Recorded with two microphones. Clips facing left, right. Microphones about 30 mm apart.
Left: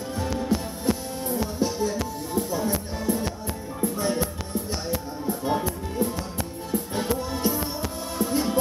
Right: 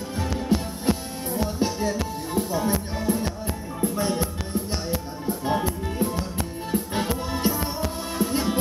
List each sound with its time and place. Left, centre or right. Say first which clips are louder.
0.2 s music: right 1 dB; centre
1.6 s music: even; right
5.4 s music: right 2 dB; centre
7.5 s music: right 1 dB; centre
8.3 s music: left 2 dB; centre